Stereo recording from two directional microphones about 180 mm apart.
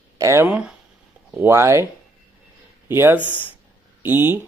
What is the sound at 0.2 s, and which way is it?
Speech, 15° right (ahead or behind).